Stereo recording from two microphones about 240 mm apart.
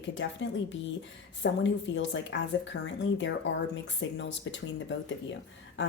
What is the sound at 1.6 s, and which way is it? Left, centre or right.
Speech, left.